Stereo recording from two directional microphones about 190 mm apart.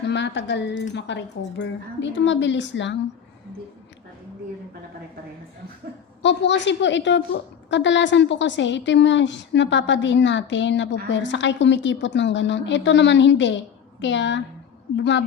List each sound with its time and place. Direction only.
0.1 s a woman's voice: 65° left (ahead or behind)
6.2 s a woman's voice: 70° left (ahead or behind)